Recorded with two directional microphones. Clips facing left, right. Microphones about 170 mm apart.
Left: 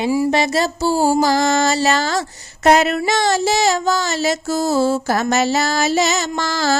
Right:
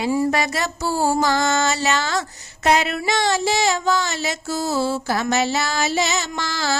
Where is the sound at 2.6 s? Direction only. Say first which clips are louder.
Left 5 dB; 45° left (ahead or behind).